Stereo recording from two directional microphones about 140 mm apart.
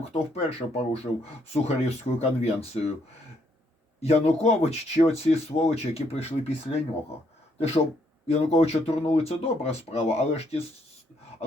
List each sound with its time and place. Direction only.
0.1 s speech: 45° left (ahead or behind)
4.0 s speech: 50° left (ahead or behind)
8.3 s speech: 50° left (ahead or behind)